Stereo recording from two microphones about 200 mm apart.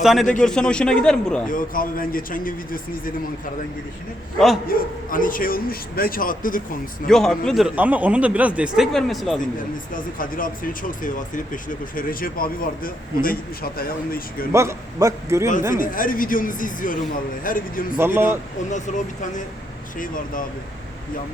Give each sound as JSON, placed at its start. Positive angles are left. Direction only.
{"t": 0.0, "sound": "a man's voice", "side_deg": 0}
{"t": 1.5, "sound": "a man's voice", "side_deg": 45}
{"t": 4.7, "sound": "a man's voice", "side_deg": 45}
{"t": 7.1, "sound": "a man's voice", "side_deg": 0}
{"t": 9.9, "sound": "a man's voice", "side_deg": 45}
{"t": 14.5, "sound": "a man's voice", "side_deg": -15}
{"t": 15.7, "sound": "a man's voice", "side_deg": 45}
{"t": 17.9, "sound": "a man's voice", "side_deg": -10}
{"t": 18.9, "sound": "a man's voice", "side_deg": 35}